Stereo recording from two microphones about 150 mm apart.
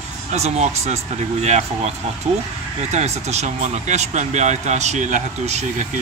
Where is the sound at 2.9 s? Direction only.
50° right (ahead or behind).